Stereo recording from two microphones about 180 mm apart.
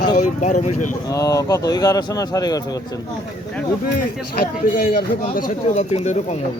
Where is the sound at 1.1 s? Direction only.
20° left (ahead or behind).